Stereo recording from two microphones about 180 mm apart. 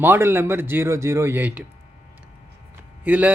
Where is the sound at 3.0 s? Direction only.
10° right (ahead or behind).